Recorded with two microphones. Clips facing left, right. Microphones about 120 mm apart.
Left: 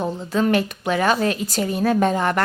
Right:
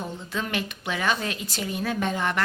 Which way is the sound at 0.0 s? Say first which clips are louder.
Left 10 dB; 40° left (ahead or behind).